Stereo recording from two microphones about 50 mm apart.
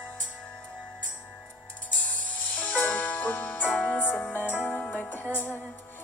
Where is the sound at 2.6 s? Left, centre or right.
Left.